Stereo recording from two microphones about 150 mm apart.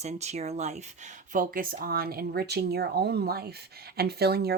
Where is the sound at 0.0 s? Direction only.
45° right (ahead or behind).